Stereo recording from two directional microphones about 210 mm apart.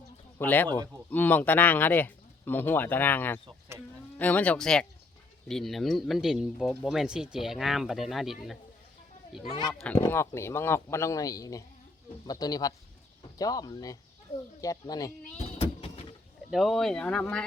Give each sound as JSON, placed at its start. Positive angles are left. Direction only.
{"t": 0.3, "sound": "speech", "side_deg": 10}
{"t": 9.4, "sound": "speech", "side_deg": 30}
{"t": 10.0, "sound": "speech", "side_deg": 10}
{"t": 15.5, "sound": "vehicle", "side_deg": 25}
{"t": 16.5, "sound": "speech", "side_deg": 0}